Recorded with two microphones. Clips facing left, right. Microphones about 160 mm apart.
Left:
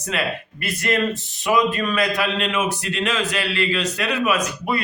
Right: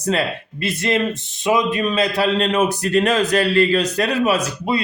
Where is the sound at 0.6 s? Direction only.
20° right (ahead or behind).